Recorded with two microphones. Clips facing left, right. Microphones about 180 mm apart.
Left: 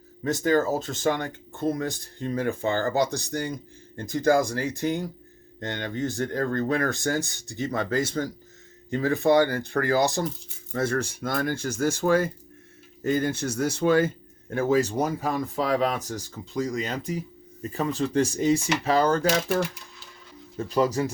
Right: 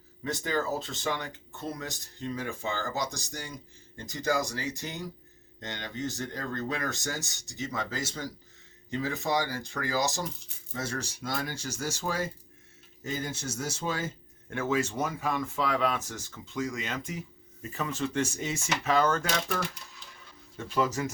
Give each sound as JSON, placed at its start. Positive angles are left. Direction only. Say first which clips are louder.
{"t": 0.3, "sound": "speech", "louder": "left 8 dB", "side_deg": 45}
{"t": 14.5, "sound": "speech", "louder": "left 7 dB", "side_deg": 35}
{"t": 20.6, "sound": "speech", "louder": "left 5 dB", "side_deg": 35}